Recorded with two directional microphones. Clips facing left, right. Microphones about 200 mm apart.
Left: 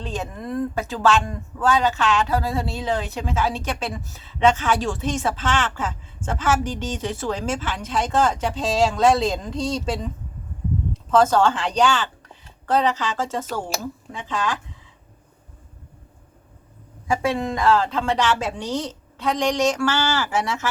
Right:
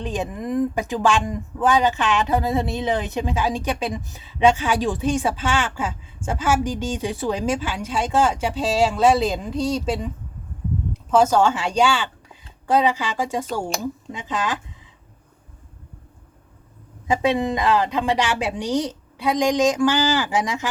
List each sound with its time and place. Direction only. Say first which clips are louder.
0.0 s speech: right 3 dB; 15° right (ahead or behind)
11.1 s speech: even; 10° right (ahead or behind)
17.1 s speech: right 2 dB; 20° right (ahead or behind)